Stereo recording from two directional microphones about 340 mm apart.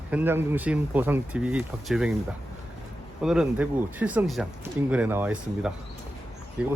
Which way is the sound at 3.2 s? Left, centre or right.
Centre.